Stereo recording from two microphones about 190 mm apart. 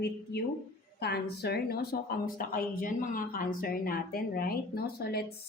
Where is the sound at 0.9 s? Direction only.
60° left (ahead or behind).